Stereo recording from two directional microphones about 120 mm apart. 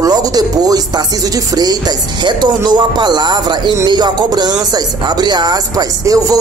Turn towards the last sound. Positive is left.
turn(degrees=-30)  # may be behind; listen again after turning